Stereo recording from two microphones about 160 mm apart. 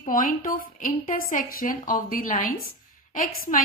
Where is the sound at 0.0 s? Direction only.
60° left (ahead or behind).